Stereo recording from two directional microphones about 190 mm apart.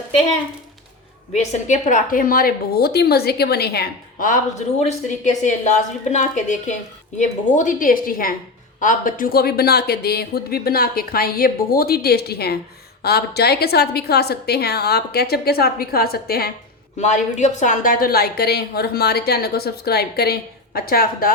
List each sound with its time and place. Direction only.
1.3 s a woman's voice: 40° left (ahead or behind); by 16.5 s 55° left (ahead or behind)
17.0 s a woman's voice: 40° left (ahead or behind)